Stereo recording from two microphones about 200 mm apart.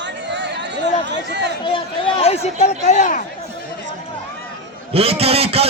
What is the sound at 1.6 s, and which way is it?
A man's voice, 25° left (ahead or behind).